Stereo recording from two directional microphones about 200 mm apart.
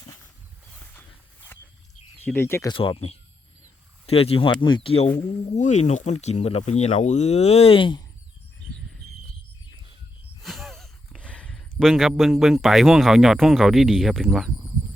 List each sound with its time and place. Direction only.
0.9 s a sound: 10° left (ahead or behind)
2.2 s speech: 10° left (ahead or behind)
2.7 s speech: 25° left (ahead or behind)
10.4 s speech: centre (ahead or behind)